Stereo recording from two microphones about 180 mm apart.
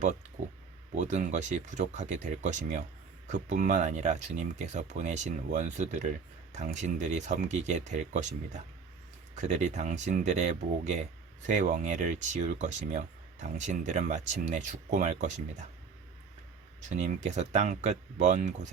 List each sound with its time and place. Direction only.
0.0 s speech: 40° right (ahead or behind)
9.3 s speech: 40° right (ahead or behind)
16.9 s speech: 40° right (ahead or behind)